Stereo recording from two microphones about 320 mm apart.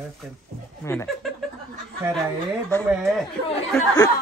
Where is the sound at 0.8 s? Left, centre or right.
Centre.